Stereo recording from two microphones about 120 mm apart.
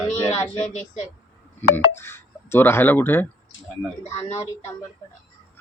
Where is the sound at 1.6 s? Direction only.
15° left (ahead or behind).